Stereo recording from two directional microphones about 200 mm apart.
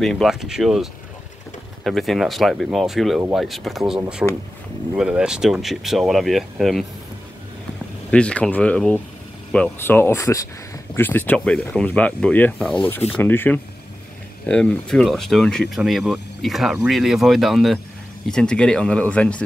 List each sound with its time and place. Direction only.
0.0 s speech: centre (ahead or behind)
1.9 s speech: centre (ahead or behind)
4.2 s speech: 10° right (ahead or behind)
8.1 s speech: 5° left (ahead or behind)